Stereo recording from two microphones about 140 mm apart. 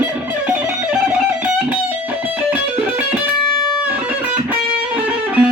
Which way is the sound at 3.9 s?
10° right (ahead or behind).